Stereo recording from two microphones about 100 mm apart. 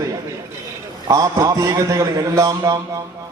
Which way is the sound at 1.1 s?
35° right (ahead or behind).